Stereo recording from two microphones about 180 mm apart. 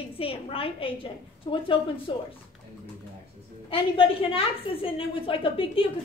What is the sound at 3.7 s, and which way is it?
A woman's voice, 30° left (ahead or behind).